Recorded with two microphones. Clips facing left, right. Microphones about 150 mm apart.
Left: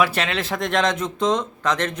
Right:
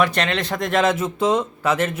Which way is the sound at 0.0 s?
5° left (ahead or behind).